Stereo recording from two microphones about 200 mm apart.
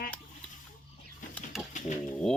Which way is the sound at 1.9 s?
35° left (ahead or behind).